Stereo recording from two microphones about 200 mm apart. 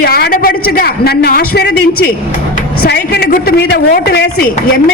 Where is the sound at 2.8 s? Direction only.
55° left (ahead or behind).